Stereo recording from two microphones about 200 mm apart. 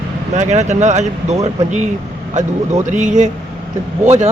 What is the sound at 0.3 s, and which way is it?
Speech, 35° right (ahead or behind).